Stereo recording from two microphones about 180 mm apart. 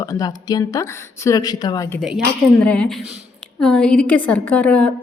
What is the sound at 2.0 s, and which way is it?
A woman's voice, 5° left (ahead or behind).